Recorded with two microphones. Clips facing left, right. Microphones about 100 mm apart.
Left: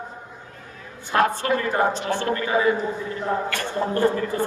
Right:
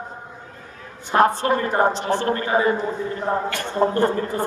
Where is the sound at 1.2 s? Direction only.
35° right (ahead or behind).